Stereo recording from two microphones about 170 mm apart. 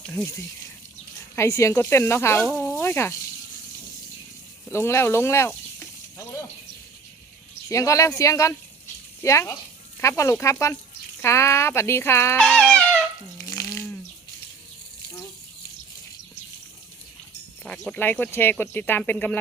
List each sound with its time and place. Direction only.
0.0 s speech: 10° left (ahead or behind)
4.7 s speech: 15° left (ahead or behind)
7.7 s speech: 20° left (ahead or behind)
12.4 s dog: 5° left (ahead or behind)
13.4 s frying: 20° left (ahead or behind)
17.7 s speech: 10° left (ahead or behind)